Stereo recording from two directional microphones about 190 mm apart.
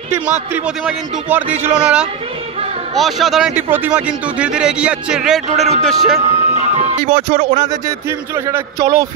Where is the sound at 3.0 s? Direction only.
Centre (ahead or behind).